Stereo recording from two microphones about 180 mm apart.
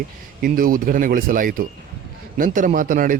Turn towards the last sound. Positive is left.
turn(degrees=-50)  # may be behind; listen again after turning